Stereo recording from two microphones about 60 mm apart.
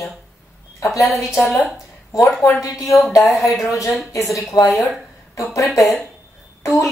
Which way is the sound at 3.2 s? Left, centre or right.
Centre.